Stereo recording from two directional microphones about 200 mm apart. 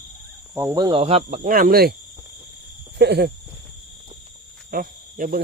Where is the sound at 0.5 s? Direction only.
15° right (ahead or behind); by 1.9 s 45° right (ahead or behind).